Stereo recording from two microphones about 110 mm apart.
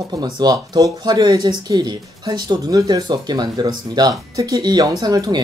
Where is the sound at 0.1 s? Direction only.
40° right (ahead or behind).